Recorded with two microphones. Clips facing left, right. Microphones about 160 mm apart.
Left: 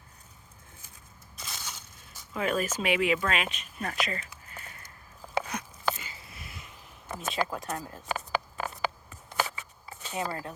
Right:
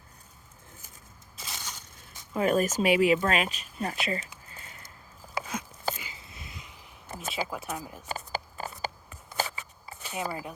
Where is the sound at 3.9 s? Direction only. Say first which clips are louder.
Right 1 dB; 30° right (ahead or behind).